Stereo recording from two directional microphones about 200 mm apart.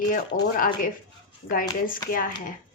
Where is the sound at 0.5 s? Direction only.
45° left (ahead or behind).